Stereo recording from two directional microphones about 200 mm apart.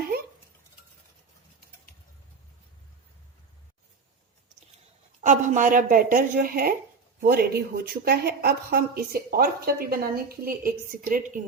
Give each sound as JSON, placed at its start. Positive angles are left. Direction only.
{"t": 5.2, "sound": "speech", "side_deg": -40}